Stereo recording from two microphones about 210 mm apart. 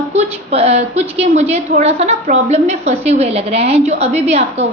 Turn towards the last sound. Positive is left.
turn(degrees=-30)  # may be behind; listen again after turning